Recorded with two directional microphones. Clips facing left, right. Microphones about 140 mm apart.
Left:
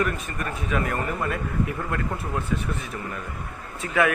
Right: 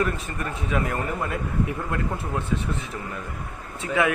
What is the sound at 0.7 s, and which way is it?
Speech, 20° right (ahead or behind).